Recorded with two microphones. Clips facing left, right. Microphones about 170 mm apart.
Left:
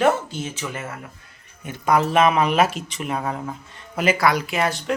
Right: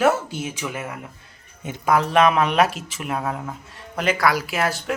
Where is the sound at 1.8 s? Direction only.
Centre (ahead or behind).